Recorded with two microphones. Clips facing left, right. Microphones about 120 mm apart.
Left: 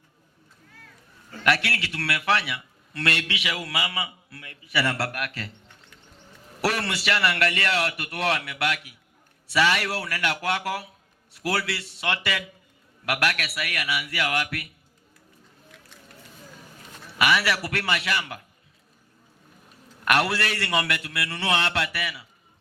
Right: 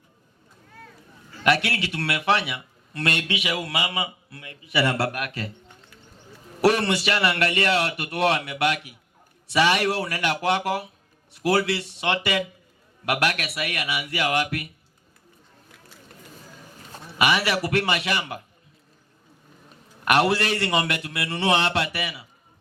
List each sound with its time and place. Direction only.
1.5 s a man's voice: 20° right (ahead or behind)
16.9 s a man's voice: 20° right (ahead or behind)
20.1 s a man's voice: 20° right (ahead or behind)